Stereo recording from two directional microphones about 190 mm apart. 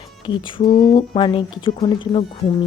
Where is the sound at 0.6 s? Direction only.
50° left (ahead or behind).